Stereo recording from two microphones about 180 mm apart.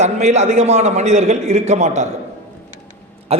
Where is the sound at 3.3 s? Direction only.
35° right (ahead or behind).